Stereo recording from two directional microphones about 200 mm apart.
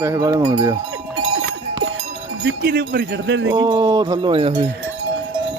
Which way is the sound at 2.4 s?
55° right (ahead or behind).